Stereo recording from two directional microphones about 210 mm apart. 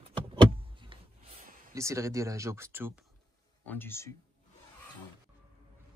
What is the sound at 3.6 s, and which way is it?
Speech, 10° left (ahead or behind).